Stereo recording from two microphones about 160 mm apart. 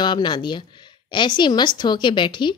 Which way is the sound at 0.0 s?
30° left (ahead or behind).